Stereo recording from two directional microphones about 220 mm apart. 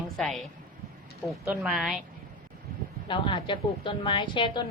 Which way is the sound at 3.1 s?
20° left (ahead or behind).